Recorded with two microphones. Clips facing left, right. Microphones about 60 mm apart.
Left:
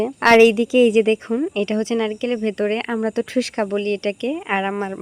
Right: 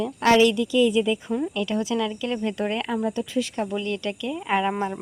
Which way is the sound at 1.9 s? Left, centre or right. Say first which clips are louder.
Left 5 dB; left.